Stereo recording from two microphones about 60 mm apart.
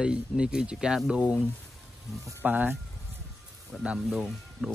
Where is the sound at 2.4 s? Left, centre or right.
Right.